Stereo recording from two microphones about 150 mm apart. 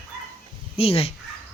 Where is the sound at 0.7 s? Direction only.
40° left (ahead or behind).